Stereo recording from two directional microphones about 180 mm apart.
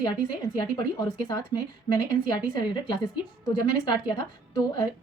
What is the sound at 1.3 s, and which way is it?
A woman's voice, 20° left (ahead or behind).